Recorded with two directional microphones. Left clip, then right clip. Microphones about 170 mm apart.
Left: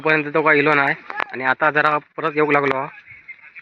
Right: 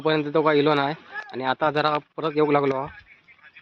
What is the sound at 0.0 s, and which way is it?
A man's voice, 15° right (ahead or behind).